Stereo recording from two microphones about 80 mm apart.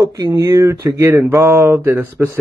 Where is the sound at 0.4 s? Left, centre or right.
Right.